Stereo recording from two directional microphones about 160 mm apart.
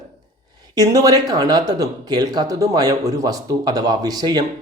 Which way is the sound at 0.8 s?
25° right (ahead or behind).